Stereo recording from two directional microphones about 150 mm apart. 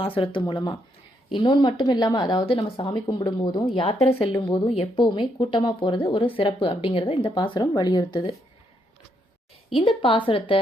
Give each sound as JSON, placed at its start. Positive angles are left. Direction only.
{"t": 0.0, "sound": "speech", "side_deg": 35}
{"t": 4.0, "sound": "speech", "side_deg": 40}
{"t": 9.7, "sound": "speech", "side_deg": 35}